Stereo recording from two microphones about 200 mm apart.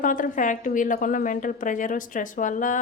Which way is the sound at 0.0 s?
40° left (ahead or behind).